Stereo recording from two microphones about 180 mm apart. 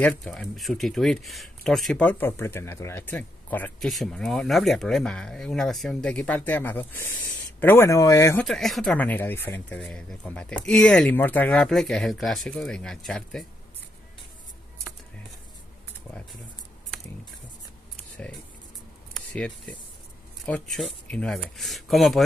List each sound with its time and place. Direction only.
0.0 s speech: 5° left (ahead or behind)
8.5 s speech: centre (ahead or behind)
16.1 s a sound: 10° left (ahead or behind)
19.1 s speech: 5° left (ahead or behind)